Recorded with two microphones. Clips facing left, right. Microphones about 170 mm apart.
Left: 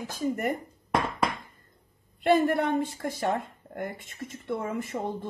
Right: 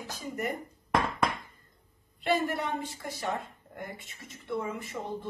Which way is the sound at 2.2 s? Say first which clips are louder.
Left 6 dB; 55° left (ahead or behind).